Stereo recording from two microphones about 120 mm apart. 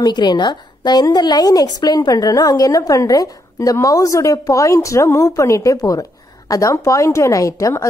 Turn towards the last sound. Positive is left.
turn(degrees=25)  # may be behind; listen again after turning